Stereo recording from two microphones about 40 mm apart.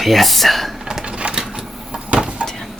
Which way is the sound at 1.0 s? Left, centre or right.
Right.